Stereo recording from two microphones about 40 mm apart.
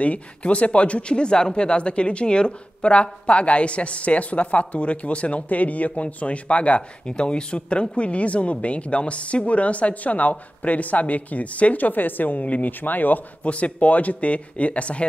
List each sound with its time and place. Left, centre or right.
0.0 s speech: left
13.4 s speech: left